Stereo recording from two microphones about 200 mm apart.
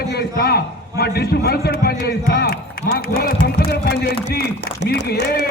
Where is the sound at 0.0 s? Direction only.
50° left (ahead or behind).